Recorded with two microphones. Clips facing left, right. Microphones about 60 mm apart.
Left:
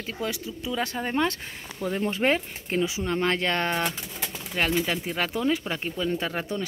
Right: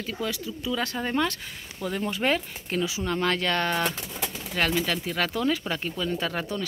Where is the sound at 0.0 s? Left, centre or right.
Left.